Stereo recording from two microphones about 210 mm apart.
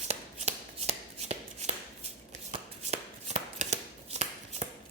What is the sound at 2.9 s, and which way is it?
Chopping, 30° right (ahead or behind).